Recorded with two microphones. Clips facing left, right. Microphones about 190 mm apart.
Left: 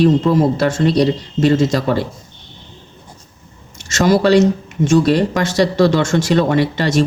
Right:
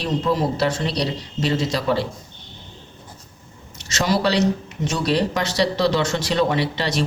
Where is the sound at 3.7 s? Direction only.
50° left (ahead or behind).